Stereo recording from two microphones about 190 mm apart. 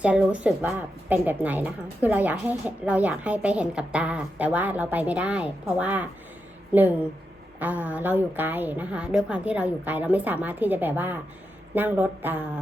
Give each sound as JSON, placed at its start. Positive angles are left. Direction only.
{"t": 0.0, "sound": "a woman's voice", "side_deg": -5}
{"t": 7.6, "sound": "a woman's voice", "side_deg": -10}